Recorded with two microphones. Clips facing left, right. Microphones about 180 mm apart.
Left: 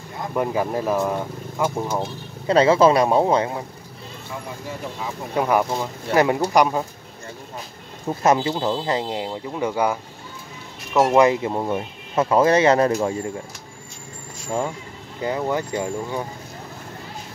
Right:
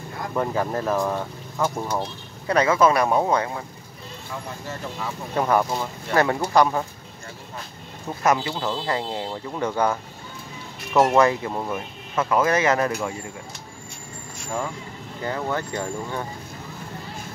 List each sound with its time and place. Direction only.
0.3 s speech: 10° left (ahead or behind)
2.4 s speech: 25° left (ahead or behind)
4.6 s speech: 15° left (ahead or behind)
8.2 s speech: 25° left (ahead or behind); by 11.1 s 5° left (ahead or behind)
11.1 s speech: 20° left (ahead or behind)
15.2 s speech: 15° left (ahead or behind)